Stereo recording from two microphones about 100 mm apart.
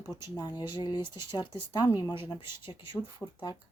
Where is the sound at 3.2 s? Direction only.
15° left (ahead or behind).